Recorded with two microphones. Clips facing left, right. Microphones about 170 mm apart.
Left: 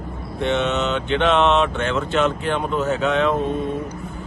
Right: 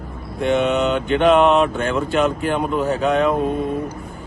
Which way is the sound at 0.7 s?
10° right (ahead or behind).